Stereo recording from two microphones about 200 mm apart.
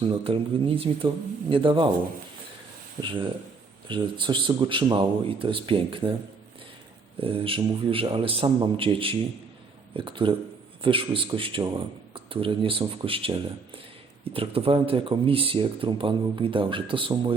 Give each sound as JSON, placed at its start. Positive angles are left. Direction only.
{"t": 0.0, "sound": "speech", "side_deg": -25}
{"t": 3.8, "sound": "speech", "side_deg": -25}
{"t": 7.2, "sound": "speech", "side_deg": -25}